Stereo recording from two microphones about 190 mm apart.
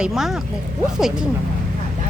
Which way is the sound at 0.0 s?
Centre (ahead or behind).